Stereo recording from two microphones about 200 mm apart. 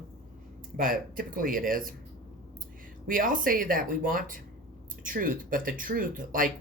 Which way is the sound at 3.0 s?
45° right (ahead or behind).